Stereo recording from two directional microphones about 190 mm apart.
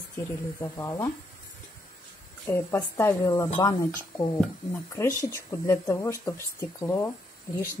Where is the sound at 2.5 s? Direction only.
15° left (ahead or behind).